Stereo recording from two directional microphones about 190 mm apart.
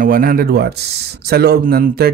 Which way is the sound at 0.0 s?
50° right (ahead or behind).